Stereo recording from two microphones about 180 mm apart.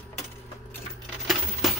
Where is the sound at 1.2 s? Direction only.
Centre (ahead or behind).